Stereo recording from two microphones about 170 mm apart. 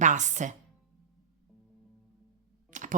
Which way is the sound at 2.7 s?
45° right (ahead or behind).